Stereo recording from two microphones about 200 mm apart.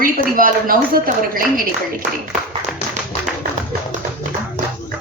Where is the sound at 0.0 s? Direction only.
45° right (ahead or behind).